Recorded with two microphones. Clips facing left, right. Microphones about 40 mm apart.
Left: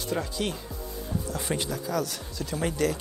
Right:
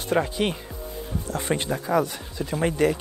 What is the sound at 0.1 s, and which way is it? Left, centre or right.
Speech, right.